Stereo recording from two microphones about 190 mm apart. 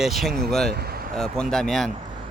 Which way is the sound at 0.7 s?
55° right (ahead or behind).